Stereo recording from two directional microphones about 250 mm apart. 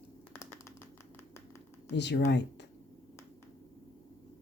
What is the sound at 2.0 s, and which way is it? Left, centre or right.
Speech, left.